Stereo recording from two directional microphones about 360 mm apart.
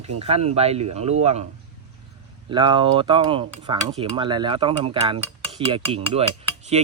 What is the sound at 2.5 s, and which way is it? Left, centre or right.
Speech, centre.